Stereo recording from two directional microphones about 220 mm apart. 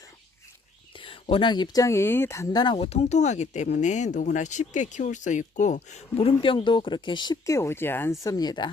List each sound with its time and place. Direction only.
0.9 s speech: 25° left (ahead or behind)